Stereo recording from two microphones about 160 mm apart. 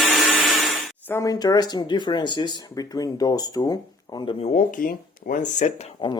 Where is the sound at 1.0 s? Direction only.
15° left (ahead or behind).